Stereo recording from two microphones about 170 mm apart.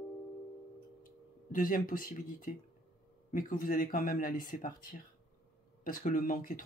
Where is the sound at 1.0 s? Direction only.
55° left (ahead or behind).